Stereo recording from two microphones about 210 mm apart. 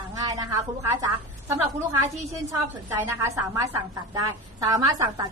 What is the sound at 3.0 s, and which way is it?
A woman's voice, 15° right (ahead or behind).